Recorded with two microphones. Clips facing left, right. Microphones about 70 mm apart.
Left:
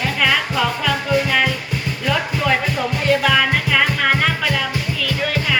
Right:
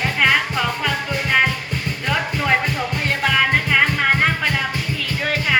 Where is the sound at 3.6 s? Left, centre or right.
Right.